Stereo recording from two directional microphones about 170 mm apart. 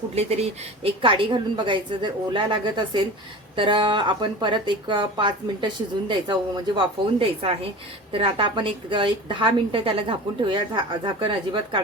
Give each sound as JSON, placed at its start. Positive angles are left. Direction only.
{"t": 0.1, "sound": "a woman's voice", "side_deg": -40}